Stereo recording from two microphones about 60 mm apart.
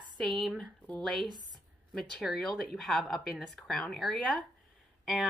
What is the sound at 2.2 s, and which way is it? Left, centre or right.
Speech, centre.